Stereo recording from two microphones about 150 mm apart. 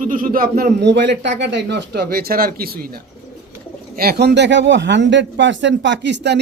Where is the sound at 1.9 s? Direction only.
90° right.